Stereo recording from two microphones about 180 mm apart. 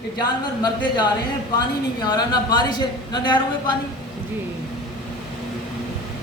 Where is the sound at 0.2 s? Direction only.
25° left (ahead or behind).